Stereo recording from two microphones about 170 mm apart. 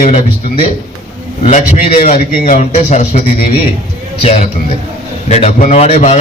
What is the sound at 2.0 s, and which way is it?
Speech, 55° left (ahead or behind).